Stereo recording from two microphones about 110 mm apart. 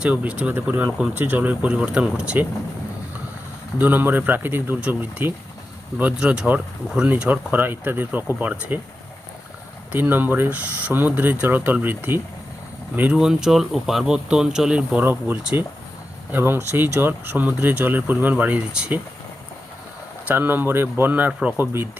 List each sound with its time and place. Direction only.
0.0 s speech: 10° right (ahead or behind)
3.8 s speech: 15° right (ahead or behind)
9.9 s speech: 20° right (ahead or behind)
15.0 s speech: 20° right (ahead or behind)
20.2 s speech: 15° right (ahead or behind)